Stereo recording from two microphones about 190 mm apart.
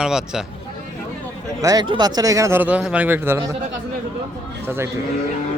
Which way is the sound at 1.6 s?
20° right (ahead or behind).